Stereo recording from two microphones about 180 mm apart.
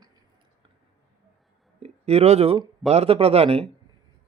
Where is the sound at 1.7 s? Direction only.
35° right (ahead or behind).